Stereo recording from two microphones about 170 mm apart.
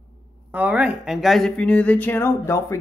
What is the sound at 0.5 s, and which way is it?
Speech, 10° right (ahead or behind).